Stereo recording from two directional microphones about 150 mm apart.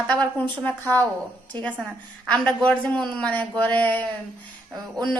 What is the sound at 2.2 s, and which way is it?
A woman's voice, 5° left (ahead or behind).